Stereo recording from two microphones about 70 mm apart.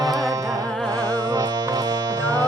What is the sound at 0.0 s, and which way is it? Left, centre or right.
Carnatic music, right.